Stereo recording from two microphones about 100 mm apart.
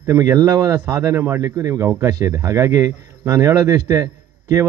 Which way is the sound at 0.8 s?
25° right (ahead or behind).